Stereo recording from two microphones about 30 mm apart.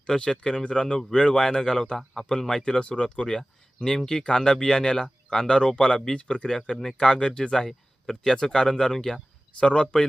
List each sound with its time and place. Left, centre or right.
0.1 s speech: left
2.2 s speech: left
7.5 s speech: centre
9.6 s speech: left